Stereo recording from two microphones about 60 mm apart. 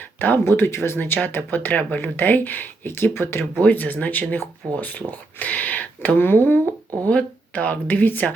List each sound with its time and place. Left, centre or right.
0.2 s speech: left
0.9 s speech: left
3.6 s speech: left
6.1 s speech: left
7.0 s speech: left